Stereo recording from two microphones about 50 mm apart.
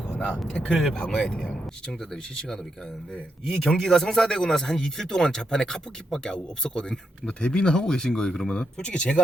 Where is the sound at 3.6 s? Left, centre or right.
Centre.